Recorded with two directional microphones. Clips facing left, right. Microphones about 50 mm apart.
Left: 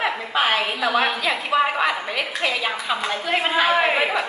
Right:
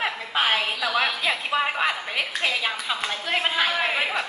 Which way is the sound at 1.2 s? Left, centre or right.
Centre.